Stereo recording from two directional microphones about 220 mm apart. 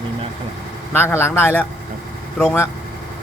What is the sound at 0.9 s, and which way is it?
Speech, 10° left (ahead or behind).